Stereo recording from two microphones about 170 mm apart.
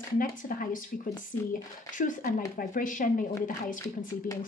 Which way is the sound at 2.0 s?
55° left (ahead or behind).